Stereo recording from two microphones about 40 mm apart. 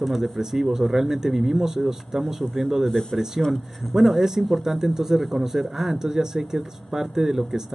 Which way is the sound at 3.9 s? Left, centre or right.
Centre.